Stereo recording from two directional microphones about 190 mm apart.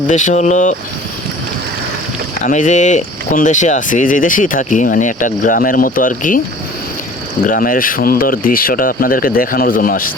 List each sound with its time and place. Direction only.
0.1 s speech: 40° left (ahead or behind)
2.4 s speech: 40° left (ahead or behind)
7.4 s speech: 45° left (ahead or behind)